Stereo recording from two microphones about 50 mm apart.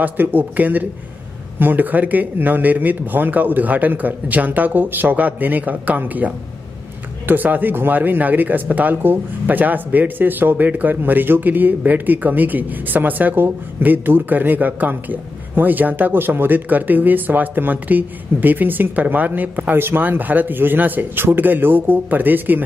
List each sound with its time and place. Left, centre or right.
0.0 s speech: right
19.8 s speech: right